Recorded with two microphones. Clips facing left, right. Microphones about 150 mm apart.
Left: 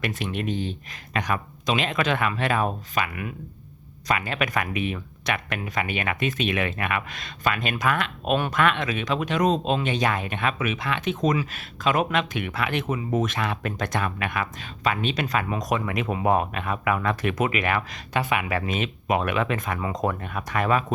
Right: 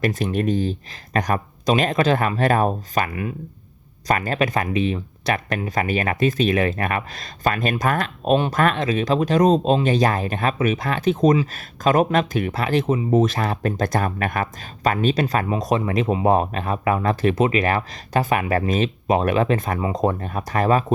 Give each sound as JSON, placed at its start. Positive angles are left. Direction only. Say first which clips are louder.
{"t": 0.0, "sound": "speech", "louder": "right 7 dB", "side_deg": -40}